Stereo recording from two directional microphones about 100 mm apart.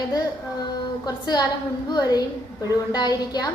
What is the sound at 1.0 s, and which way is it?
A woman's voice, 45° left (ahead or behind).